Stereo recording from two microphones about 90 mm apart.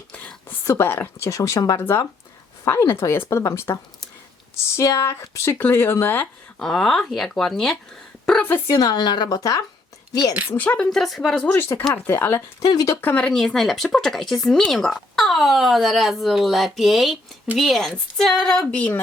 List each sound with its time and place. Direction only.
0.6 s a woman's voice: 25° left (ahead or behind)
1.4 s a woman's voice: 45° left (ahead or behind)
1.8 s a woman's voice: 25° left (ahead or behind)
4.8 s a woman's voice: 30° left (ahead or behind)
6.6 s speech: 5° left (ahead or behind)
8.4 s a woman's voice: 25° left (ahead or behind)
8.7 s a woman's voice: 45° left (ahead or behind)
10.5 s a woman's voice: 15° left (ahead or behind)
10.8 s speech: centre (ahead or behind)
11.7 s a woman's voice: 35° left (ahead or behind)
12.0 s a woman's voice: 25° left (ahead or behind)
12.5 s a woman's voice: 40° left (ahead or behind)
13.0 s a woman's voice: 15° left (ahead or behind)
13.3 s speech: 5° left (ahead or behind)